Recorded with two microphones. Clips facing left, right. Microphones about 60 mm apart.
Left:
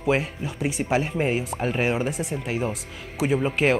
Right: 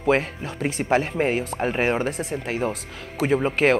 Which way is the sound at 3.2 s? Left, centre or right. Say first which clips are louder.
Right 2 dB; centre.